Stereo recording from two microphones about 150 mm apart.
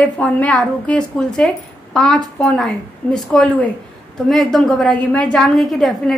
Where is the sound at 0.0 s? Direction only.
10° left (ahead or behind).